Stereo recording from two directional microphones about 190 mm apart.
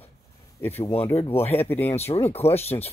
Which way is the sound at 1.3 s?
30° left (ahead or behind).